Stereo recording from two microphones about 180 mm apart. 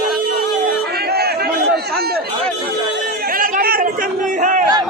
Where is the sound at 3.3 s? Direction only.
50° right (ahead or behind).